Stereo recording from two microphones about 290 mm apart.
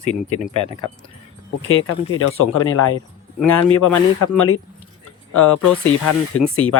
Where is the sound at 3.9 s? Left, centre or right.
Centre.